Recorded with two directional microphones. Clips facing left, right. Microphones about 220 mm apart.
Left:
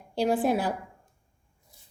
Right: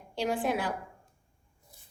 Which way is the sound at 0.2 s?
35° left (ahead or behind).